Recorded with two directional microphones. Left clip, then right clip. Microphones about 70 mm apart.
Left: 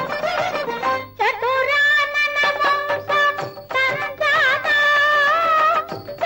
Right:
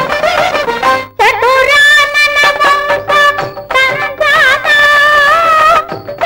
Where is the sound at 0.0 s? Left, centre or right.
Left.